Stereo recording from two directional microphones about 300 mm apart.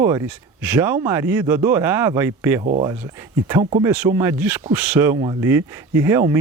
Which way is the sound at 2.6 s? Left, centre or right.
Right.